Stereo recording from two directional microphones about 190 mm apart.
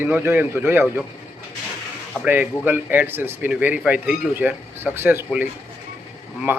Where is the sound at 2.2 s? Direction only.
10° right (ahead or behind).